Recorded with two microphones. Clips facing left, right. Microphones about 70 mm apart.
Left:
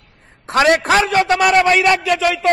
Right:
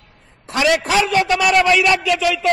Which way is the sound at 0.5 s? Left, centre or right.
Left.